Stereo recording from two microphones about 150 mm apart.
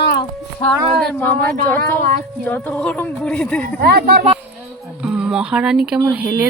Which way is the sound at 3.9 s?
90° right.